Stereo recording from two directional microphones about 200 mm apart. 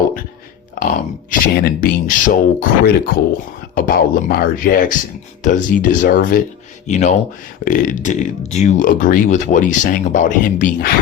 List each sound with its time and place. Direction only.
0.8 s speech: 40° left (ahead or behind)